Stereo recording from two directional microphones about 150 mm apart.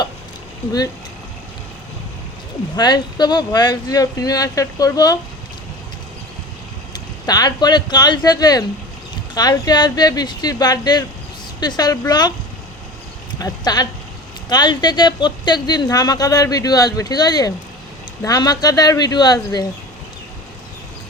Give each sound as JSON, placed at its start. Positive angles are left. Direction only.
{"t": 2.7, "sound": "a woman's voice", "side_deg": 30}
{"t": 6.9, "sound": "a woman's voice", "side_deg": 25}
{"t": 13.4, "sound": "a woman's voice", "side_deg": 25}